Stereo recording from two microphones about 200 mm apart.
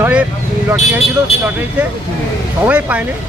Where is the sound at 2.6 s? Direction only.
5° right (ahead or behind).